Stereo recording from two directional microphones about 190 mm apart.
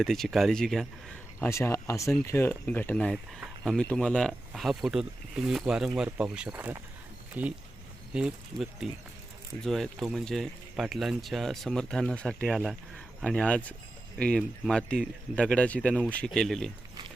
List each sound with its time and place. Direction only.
0.0 s speech: centre (ahead or behind)
1.4 s speech: 15° left (ahead or behind)